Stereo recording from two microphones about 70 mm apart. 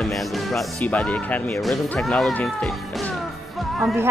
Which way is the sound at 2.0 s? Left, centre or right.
Centre.